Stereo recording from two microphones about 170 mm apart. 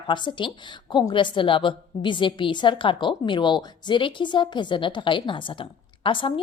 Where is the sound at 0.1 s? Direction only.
25° left (ahead or behind).